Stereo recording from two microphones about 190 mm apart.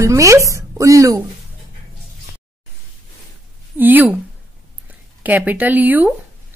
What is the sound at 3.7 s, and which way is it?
Speech, 10° right (ahead or behind).